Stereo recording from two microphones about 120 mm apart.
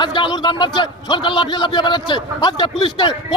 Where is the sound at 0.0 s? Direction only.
40° left (ahead or behind).